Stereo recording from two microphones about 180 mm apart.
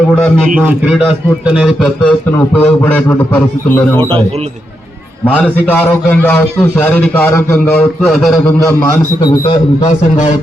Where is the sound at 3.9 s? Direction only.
30° right (ahead or behind).